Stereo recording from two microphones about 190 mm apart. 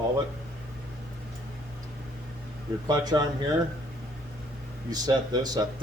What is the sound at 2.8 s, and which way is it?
Speech, 20° right (ahead or behind).